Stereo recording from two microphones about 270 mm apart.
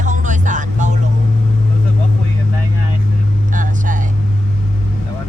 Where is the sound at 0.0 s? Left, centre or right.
Right.